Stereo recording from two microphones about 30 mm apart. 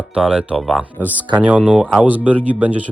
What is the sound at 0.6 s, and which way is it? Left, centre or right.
Speech, centre.